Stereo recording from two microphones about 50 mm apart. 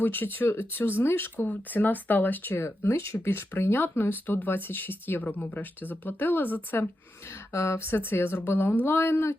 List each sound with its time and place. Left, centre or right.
0.0 s speech: left
2.8 s speech: left
3.2 s speech: left
4.3 s speech: left
7.5 s speech: left
7.9 s speech: left